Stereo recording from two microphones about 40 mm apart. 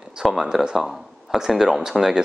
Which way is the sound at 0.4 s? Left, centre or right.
Centre.